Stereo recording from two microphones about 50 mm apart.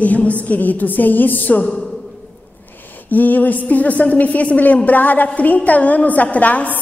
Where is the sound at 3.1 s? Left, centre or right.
Left.